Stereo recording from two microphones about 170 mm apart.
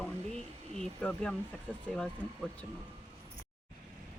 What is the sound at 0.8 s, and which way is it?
Speech, 5° left (ahead or behind).